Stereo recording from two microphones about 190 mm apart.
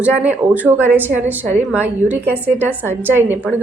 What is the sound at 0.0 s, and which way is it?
Speech, 5° right (ahead or behind).